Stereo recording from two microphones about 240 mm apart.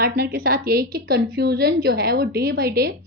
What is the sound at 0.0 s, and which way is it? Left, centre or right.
A woman's voice, right.